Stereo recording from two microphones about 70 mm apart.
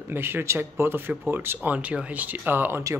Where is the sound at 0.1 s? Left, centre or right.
Right.